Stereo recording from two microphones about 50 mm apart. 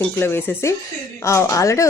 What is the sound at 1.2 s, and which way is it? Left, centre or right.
Speech, left.